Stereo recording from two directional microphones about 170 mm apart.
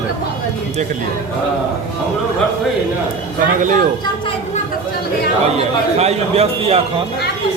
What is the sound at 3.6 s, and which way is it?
Speech, 50° right (ahead or behind).